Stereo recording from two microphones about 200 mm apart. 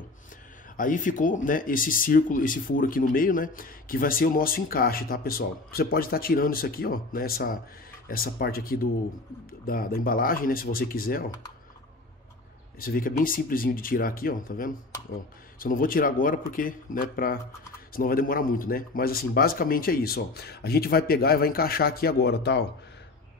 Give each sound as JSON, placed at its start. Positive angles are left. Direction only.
{"t": 0.7, "sound": "speech", "side_deg": 40}
{"t": 12.7, "sound": "speech", "side_deg": 45}